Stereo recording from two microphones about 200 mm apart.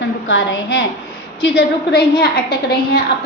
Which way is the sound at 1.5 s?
55° left (ahead or behind).